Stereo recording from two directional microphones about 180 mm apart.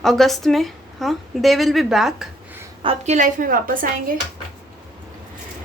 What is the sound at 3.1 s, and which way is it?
Speech, 45° right (ahead or behind).